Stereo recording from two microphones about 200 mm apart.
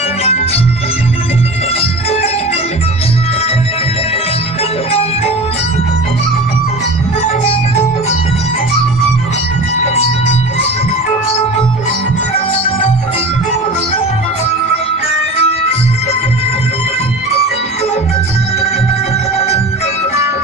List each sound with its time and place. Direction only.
0.2 s music: 30° left (ahead or behind)
1.7 s music: 30° left (ahead or behind)
4.9 s music: 30° left (ahead or behind)
7.4 s music: 30° left (ahead or behind)
15.4 s music: 30° left (ahead or behind)